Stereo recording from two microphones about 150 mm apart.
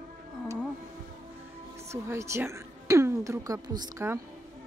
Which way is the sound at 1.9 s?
20° right (ahead or behind).